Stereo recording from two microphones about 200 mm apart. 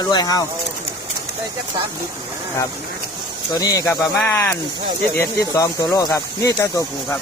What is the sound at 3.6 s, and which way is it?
Speech, 20° left (ahead or behind).